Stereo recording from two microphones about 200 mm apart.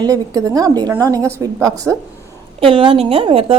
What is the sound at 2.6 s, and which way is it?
Speech, 25° right (ahead or behind).